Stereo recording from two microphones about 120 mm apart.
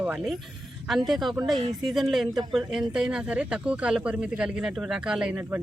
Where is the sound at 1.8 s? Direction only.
Centre (ahead or behind).